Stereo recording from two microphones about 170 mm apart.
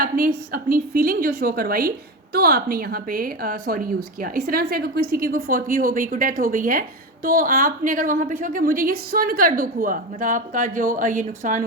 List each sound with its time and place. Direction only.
0.0 s a woman's voice: 55° right (ahead or behind)